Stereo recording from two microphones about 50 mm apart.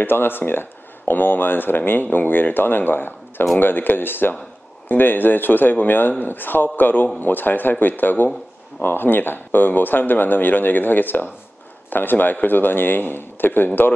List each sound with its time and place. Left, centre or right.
0.0 s speech: left